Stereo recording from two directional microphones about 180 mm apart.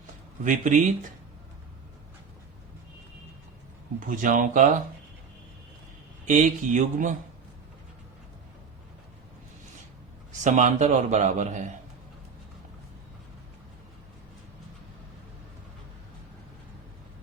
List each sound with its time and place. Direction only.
0.4 s speech: 45° right (ahead or behind)
4.0 s speech: 45° right (ahead or behind)
6.2 s speech: 45° right (ahead or behind)
10.4 s a man's voice: 40° right (ahead or behind)